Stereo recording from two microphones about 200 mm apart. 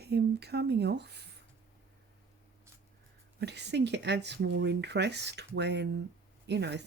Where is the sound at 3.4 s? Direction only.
60° right (ahead or behind).